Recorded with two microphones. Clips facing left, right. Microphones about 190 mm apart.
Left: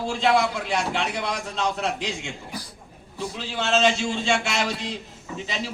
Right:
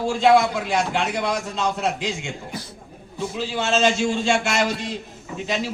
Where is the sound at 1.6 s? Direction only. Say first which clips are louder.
Left 1 dB; 10° right (ahead or behind).